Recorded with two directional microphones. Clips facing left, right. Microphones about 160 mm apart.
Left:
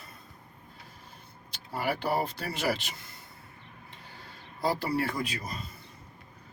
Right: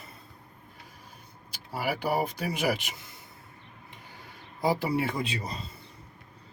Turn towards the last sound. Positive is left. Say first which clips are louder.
# right 2 dB
turn(degrees=-30)  # may be behind; listen again after turning